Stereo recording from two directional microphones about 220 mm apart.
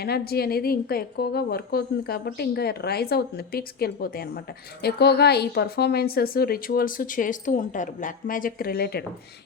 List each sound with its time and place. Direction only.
0.0 s a woman's voice: 45° left (ahead or behind)